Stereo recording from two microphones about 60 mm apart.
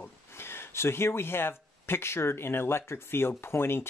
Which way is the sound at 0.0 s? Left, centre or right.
Left.